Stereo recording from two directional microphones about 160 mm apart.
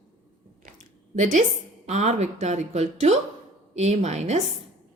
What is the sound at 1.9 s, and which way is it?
A woman's voice, 45° right (ahead or behind).